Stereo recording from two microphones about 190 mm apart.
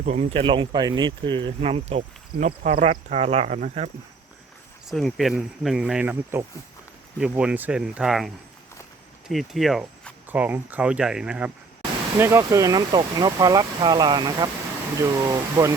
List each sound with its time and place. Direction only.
0.0 s speech: 35° right (ahead or behind)
4.9 s speech: centre (ahead or behind); by 15.7 s 15° right (ahead or behind)